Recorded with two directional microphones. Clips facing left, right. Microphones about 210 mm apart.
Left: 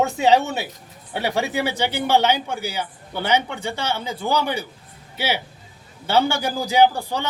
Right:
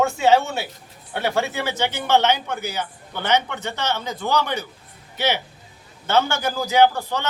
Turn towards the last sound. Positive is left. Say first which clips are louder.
# even
turn(degrees=15)  # may be behind; listen again after turning